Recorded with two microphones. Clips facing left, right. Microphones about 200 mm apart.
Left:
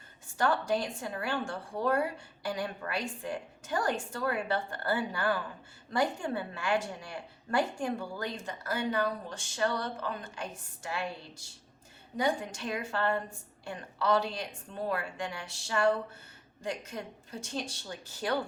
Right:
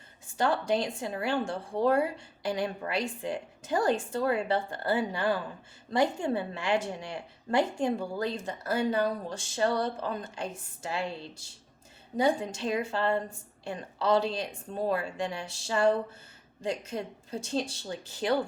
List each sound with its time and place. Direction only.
0.3 s a woman's voice: 25° right (ahead or behind)